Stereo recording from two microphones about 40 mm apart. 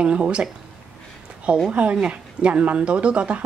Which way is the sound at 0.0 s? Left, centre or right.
Right.